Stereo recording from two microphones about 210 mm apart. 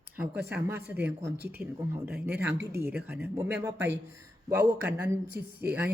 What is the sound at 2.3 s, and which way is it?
Speech, 55° right (ahead or behind).